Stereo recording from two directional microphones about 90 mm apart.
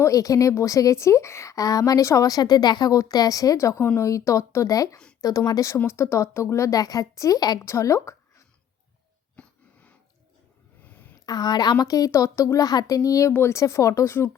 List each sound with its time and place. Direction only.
0.0 s a woman's voice: 40° left (ahead or behind)
7.6 s speech: 35° left (ahead or behind)
9.3 s wheeze: 15° left (ahead or behind)
10.8 s a sound: 20° left (ahead or behind)
11.3 s a woman's voice: 50° left (ahead or behind); by 14.3 s 30° left (ahead or behind)